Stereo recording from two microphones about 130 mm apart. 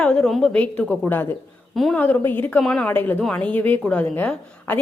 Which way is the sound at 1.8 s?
Centre (ahead or behind).